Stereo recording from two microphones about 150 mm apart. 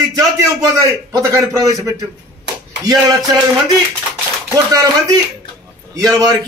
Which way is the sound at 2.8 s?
25° right (ahead or behind).